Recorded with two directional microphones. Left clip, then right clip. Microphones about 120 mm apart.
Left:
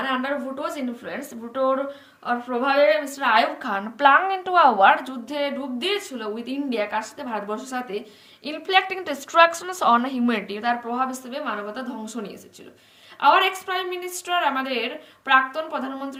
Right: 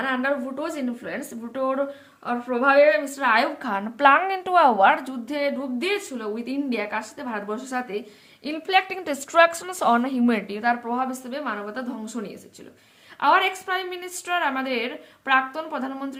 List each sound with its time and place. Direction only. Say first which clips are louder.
0.0 s a woman's voice: right 1 dB; 40° right (ahead or behind)
1.0 s speech: even; 90° right; by 1.8 s 75° right (ahead or behind)
2.2 s a woman's voice: right 1 dB; 30° right (ahead or behind)
8.4 s a woman's voice: left 1 dB; 40° right (ahead or behind)
9.1 s a woman's voice: left 1 dB; 55° right (ahead or behind); by 16.1 s 30° right (ahead or behind)